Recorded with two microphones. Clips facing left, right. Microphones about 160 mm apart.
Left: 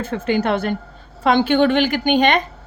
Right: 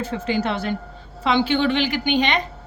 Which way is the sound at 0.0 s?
55° left (ahead or behind).